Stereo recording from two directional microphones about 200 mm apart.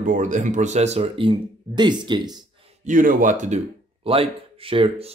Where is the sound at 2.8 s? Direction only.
40° right (ahead or behind).